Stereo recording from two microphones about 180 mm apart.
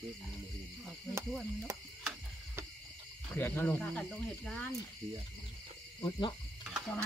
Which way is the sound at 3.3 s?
10° left (ahead or behind).